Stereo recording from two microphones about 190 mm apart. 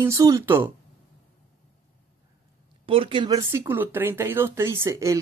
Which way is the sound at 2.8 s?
30° right (ahead or behind).